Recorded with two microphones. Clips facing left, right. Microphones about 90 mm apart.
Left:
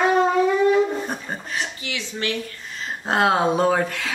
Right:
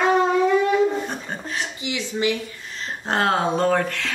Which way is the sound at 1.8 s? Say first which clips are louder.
Right 5 dB; 15° right (ahead or behind).